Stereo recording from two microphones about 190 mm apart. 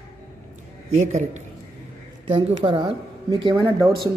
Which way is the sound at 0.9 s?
40° right (ahead or behind).